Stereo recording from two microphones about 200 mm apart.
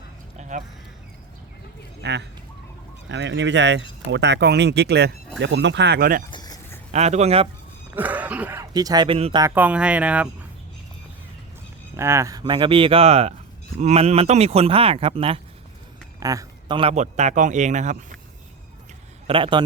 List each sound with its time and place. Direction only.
0.3 s a sound: 35° right (ahead or behind)
2.0 s speech: 60° right (ahead or behind)
6.3 s a sound: 20° left (ahead or behind)
6.9 s speech: 35° right (ahead or behind)
7.9 s speech: 10° right (ahead or behind); by 9.4 s 30° right (ahead or behind)
9.4 s speech: 10° right (ahead or behind)
11.9 s speech: 15° right (ahead or behind)
16.2 s speech: 15° right (ahead or behind); by 17.9 s 35° right (ahead or behind)
19.3 s speech: 25° right (ahead or behind)